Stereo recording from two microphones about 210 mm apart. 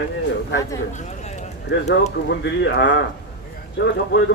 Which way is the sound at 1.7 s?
55° left (ahead or behind).